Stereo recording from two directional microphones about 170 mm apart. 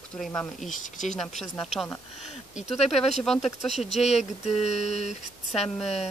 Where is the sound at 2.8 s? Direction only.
40° left (ahead or behind).